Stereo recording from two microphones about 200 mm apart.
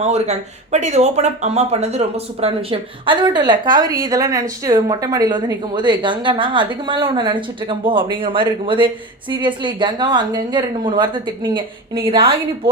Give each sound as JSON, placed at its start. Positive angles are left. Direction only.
{"t": 0.0, "sound": "speech", "side_deg": -35}
{"t": 11.9, "sound": "a woman's voice", "side_deg": -50}